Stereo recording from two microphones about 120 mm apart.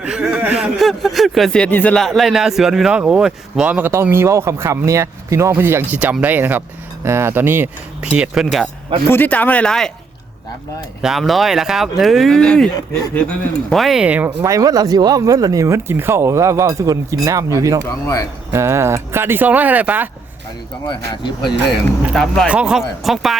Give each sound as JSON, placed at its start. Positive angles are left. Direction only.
{"t": 0.0, "sound": "speech", "side_deg": -10}
{"t": 2.0, "sound": "speech", "side_deg": 0}
{"t": 8.1, "sound": "speech", "side_deg": -5}
{"t": 9.0, "sound": "speech", "side_deg": 15}
{"t": 11.0, "sound": "speech", "side_deg": 0}
{"t": 13.7, "sound": "speech", "side_deg": 0}
{"t": 14.3, "sound": "speech", "side_deg": -25}
{"t": 17.8, "sound": "speech", "side_deg": 25}
{"t": 18.5, "sound": "speech", "side_deg": -20}
{"t": 20.8, "sound": "speech", "side_deg": 40}
{"t": 22.1, "sound": "speech", "side_deg": 5}
{"t": 22.4, "sound": "speech", "side_deg": -10}